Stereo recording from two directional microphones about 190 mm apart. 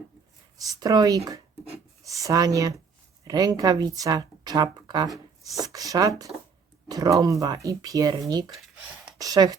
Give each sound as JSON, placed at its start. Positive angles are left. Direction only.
{"t": 0.8, "sound": "speech", "side_deg": -20}
{"t": 5.0, "sound": "a sound", "side_deg": 0}
{"t": 5.5, "sound": "speech", "side_deg": -20}